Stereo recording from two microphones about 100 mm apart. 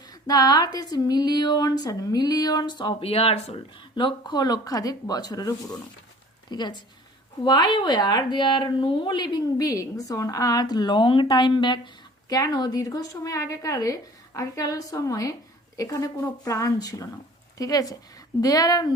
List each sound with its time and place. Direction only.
0.1 s a woman's voice: 40° left (ahead or behind)
3.0 s speech: 80° left
3.9 s a woman's voice: 50° left (ahead or behind)
12.3 s a woman's voice: 40° left (ahead or behind)